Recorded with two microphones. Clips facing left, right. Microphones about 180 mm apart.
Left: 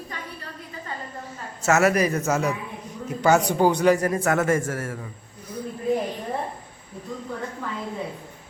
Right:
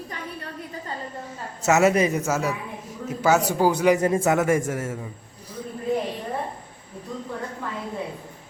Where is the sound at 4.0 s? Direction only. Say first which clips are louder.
Right 2 dB; 25° right (ahead or behind).